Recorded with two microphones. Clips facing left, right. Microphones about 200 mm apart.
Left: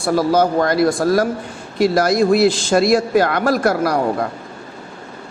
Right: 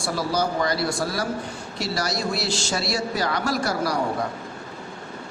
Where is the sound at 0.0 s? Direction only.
55° left (ahead or behind).